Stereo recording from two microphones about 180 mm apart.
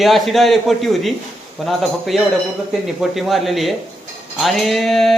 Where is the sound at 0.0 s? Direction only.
Centre (ahead or behind).